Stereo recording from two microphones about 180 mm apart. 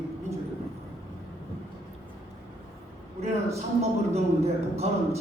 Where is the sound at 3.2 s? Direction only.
35° right (ahead or behind).